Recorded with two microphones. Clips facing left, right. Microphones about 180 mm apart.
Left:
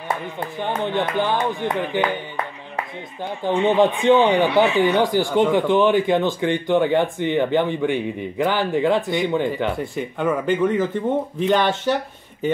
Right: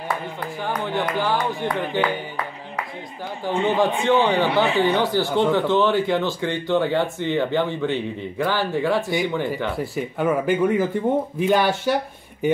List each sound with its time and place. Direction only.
0.4 s speech: 25° left (ahead or behind)
3.6 s speech: 20° left (ahead or behind)
9.9 s speech: 5° right (ahead or behind)